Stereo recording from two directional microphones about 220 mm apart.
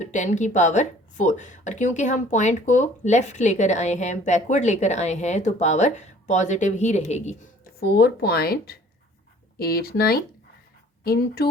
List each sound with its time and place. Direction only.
0.0 s speech: 35° left (ahead or behind)
7.8 s speech: 45° left (ahead or behind)